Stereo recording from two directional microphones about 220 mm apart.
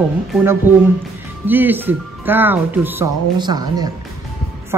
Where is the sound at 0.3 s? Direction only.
10° right (ahead or behind).